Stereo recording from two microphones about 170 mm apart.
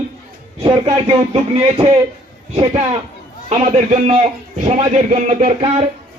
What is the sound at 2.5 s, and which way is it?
A man's voice, 40° right (ahead or behind).